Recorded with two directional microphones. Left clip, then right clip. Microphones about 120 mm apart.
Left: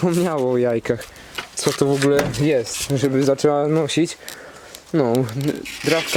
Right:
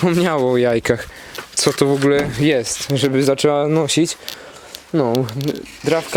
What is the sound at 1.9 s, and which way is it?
Speech, 10° right (ahead or behind).